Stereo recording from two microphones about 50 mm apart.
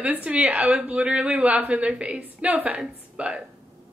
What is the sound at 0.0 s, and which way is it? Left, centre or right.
A woman's voice, right.